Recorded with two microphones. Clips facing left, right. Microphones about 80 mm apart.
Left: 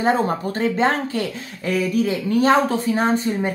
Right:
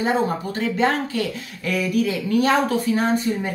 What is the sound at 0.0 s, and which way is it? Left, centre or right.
Speech, left.